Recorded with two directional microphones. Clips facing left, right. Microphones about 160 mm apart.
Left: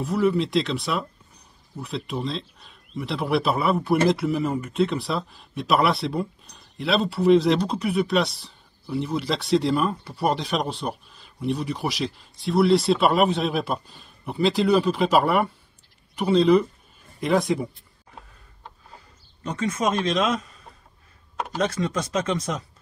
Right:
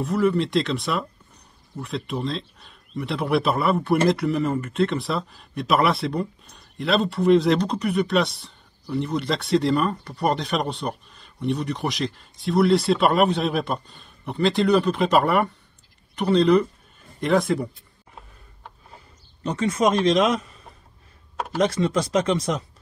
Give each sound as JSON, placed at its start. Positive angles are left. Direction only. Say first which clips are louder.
{"t": 0.0, "sound": "speech", "louder": "right 1 dB", "side_deg": 0}
{"t": 19.4, "sound": "speech", "louder": "right 3 dB", "side_deg": -30}
{"t": 21.6, "sound": "speech", "louder": "right 4 dB", "side_deg": -30}